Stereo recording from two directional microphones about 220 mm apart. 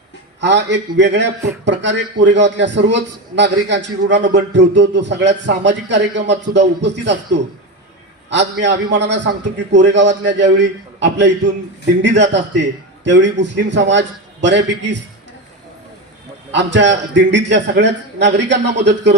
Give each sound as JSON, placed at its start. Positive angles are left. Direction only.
{"t": 0.3, "sound": "a man's voice", "side_deg": -55}
{"t": 8.3, "sound": "a man's voice", "side_deg": -55}
{"t": 16.5, "sound": "a man's voice", "side_deg": -55}